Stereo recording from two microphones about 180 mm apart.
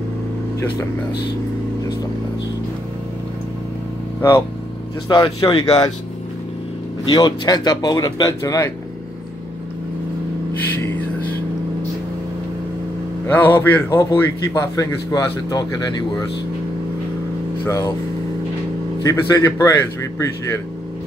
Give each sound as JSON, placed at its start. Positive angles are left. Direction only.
{"t": 5.0, "sound": "speech", "side_deg": 20}
{"t": 7.1, "sound": "speech", "side_deg": 25}
{"t": 13.3, "sound": "a man's voice", "side_deg": 10}
{"t": 17.6, "sound": "a man's voice", "side_deg": 15}
{"t": 19.0, "sound": "a man's voice", "side_deg": 15}